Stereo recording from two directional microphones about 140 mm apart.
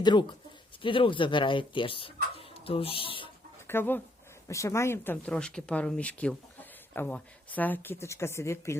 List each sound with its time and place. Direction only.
0.0 s speech: 35° left (ahead or behind)
3.7 s speech: 15° left (ahead or behind)